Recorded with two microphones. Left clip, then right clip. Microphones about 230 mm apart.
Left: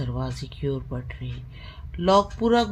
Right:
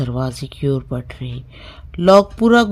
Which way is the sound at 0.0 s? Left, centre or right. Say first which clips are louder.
Right 9 dB; right.